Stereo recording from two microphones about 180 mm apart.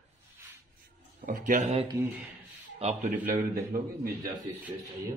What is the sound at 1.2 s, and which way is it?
Speech, 50° right (ahead or behind).